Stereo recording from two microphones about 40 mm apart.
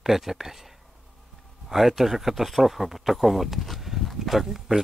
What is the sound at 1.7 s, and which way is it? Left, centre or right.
Speech, centre.